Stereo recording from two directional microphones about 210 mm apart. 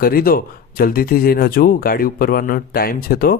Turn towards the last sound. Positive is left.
turn(degrees=45)  # may be behind; listen again after turning